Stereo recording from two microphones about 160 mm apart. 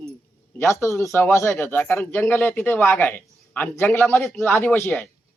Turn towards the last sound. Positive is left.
turn(degrees=10)  # may be behind; listen again after turning